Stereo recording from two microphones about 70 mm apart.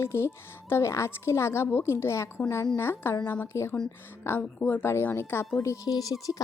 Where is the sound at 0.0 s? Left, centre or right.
Left.